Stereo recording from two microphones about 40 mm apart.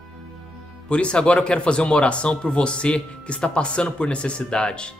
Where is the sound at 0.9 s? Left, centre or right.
Left.